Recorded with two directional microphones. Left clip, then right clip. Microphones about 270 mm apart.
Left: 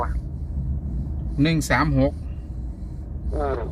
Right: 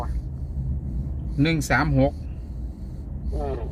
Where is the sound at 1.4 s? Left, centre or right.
Centre.